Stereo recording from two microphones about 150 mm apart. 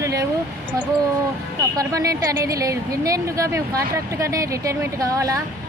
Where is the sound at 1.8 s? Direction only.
20° right (ahead or behind).